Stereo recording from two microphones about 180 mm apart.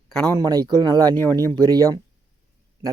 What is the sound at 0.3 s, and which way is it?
Speech, 20° right (ahead or behind).